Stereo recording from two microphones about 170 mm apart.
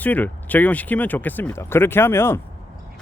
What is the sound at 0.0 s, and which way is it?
Speech, 10° left (ahead or behind).